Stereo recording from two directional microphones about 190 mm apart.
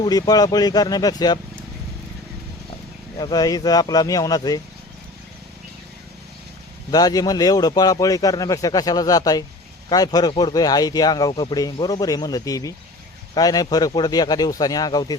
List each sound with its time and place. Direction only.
0.0 s speech: 20° left (ahead or behind)
3.2 s speech: 20° left (ahead or behind)
6.9 s speech: 20° left (ahead or behind)